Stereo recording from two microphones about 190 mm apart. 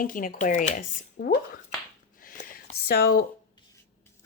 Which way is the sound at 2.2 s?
45° left (ahead or behind).